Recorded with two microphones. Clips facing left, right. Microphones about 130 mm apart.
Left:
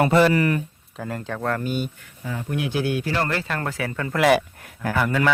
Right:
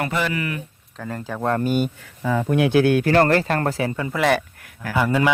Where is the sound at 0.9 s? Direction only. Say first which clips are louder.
Even; centre (ahead or behind).